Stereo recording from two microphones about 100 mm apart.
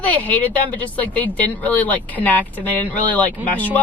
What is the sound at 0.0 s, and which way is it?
Speech, 15° left (ahead or behind).